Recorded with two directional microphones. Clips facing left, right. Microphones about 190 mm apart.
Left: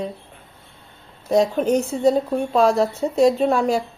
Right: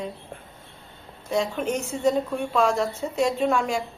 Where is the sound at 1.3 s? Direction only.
35° left (ahead or behind).